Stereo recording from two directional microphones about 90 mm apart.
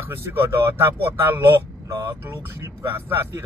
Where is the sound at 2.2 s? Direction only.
30° right (ahead or behind).